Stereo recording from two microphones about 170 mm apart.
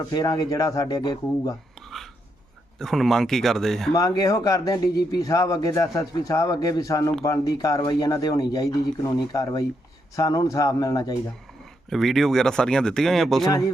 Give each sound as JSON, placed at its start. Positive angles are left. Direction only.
{"t": 0.0, "sound": "speech", "side_deg": 25}
{"t": 2.7, "sound": "speech", "side_deg": 0}
{"t": 3.9, "sound": "speech", "side_deg": 20}
{"t": 11.9, "sound": "speech", "side_deg": 0}